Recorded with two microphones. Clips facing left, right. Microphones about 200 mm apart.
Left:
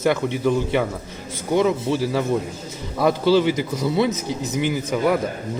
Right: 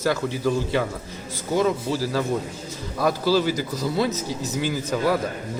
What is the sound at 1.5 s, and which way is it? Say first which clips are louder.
Speech: left 3 dB; 25° left (ahead or behind).